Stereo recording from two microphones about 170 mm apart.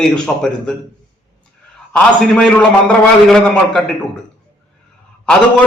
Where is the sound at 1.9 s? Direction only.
5° left (ahead or behind).